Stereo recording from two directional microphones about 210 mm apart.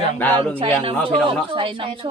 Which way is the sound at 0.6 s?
25° right (ahead or behind).